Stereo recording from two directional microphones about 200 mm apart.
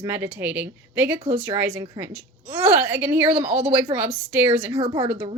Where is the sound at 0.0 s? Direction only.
10° right (ahead or behind).